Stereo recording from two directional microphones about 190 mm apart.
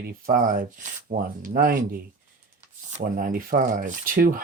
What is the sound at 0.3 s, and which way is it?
Speech, 45° right (ahead or behind).